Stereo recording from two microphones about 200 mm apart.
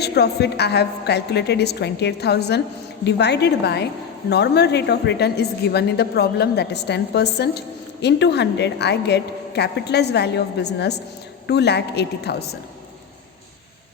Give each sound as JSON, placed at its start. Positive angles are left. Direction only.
{"t": 0.0, "sound": "a woman's voice", "side_deg": 55}